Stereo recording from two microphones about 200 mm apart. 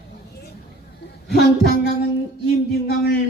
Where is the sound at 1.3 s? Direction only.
50° left (ahead or behind).